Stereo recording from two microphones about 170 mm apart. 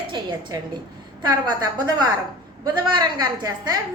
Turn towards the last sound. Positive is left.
turn(degrees=-25)  # may be behind; listen again after turning